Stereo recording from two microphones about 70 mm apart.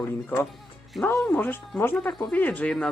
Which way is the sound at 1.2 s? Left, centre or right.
Left.